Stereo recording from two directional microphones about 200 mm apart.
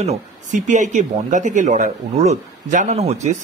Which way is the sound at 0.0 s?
35° right (ahead or behind).